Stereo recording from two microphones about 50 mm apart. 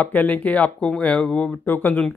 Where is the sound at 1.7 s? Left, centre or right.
Left.